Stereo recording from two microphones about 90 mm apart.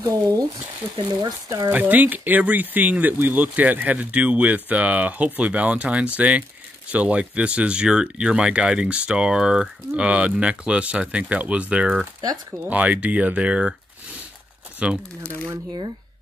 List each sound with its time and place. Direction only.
0.9 s speech: 50° right (ahead or behind)
1.7 s speech: 20° right (ahead or behind)
12.2 s speech: 45° right (ahead or behind)
12.6 s speech: 15° right (ahead or behind)
14.8 s speech: 10° right (ahead or behind)